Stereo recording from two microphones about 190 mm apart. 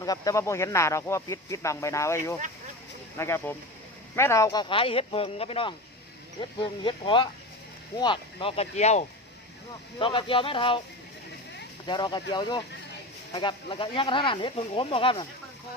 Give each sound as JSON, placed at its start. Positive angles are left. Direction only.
{"t": 0.0, "sound": "speech", "side_deg": 20}
{"t": 10.0, "sound": "speech", "side_deg": 25}
{"t": 11.9, "sound": "speech", "side_deg": 25}